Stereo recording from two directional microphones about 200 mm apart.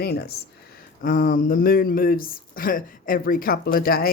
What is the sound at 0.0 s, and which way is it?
Speech, 55° left (ahead or behind).